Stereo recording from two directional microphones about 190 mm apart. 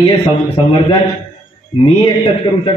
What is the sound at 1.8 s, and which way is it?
Speech, 25° left (ahead or behind).